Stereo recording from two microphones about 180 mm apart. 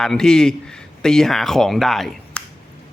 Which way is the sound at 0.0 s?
5° left (ahead or behind).